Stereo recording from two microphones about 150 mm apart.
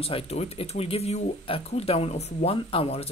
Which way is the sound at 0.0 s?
40° left (ahead or behind).